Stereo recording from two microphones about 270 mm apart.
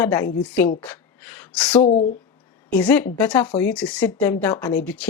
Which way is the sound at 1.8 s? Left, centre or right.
Left.